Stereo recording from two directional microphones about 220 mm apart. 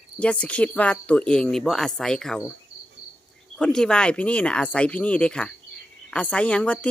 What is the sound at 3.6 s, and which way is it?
Speech, 5° left (ahead or behind).